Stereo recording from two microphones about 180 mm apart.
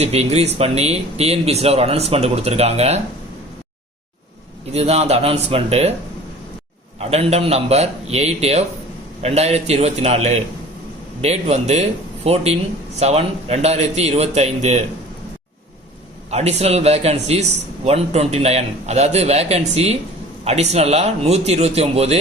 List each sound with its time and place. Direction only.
0.0 s speech: 35° right (ahead or behind)
4.7 s speech: 35° right (ahead or behind)
7.0 s speech: 35° right (ahead or behind)
16.3 s speech: 35° right (ahead or behind)